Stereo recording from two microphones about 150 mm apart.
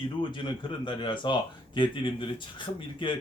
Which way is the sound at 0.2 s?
35° left (ahead or behind).